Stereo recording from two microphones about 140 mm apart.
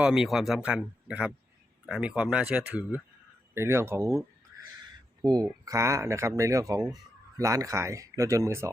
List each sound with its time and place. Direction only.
0.0 s speech: 5° right (ahead or behind); by 4.2 s 20° right (ahead or behind)
5.2 s speech: 30° right (ahead or behind)